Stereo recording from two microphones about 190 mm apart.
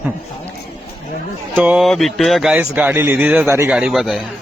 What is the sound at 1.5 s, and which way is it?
Speech, 5° right (ahead or behind).